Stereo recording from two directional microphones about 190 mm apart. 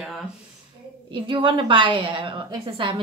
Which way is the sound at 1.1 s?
25° right (ahead or behind).